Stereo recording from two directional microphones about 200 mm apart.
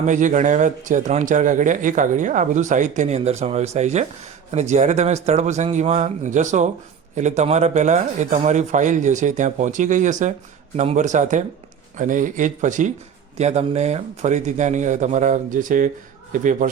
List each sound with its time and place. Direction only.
0.0 s speech: 40° right (ahead or behind)